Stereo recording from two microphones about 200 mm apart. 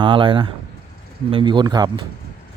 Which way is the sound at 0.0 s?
25° right (ahead or behind).